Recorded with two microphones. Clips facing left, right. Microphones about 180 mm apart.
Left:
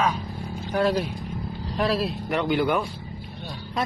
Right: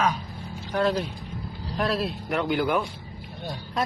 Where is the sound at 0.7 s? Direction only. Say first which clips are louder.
Left 1 dB; 10° left (ahead or behind).